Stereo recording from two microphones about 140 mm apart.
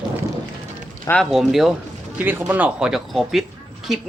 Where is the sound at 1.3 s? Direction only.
Centre (ahead or behind).